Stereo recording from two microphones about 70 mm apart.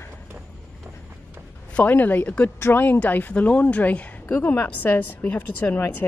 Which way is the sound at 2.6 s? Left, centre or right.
Left.